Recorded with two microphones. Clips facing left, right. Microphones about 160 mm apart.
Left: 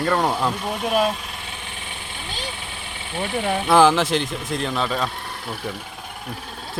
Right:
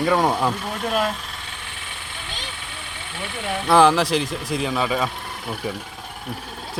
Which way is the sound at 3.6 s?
Centre (ahead or behind).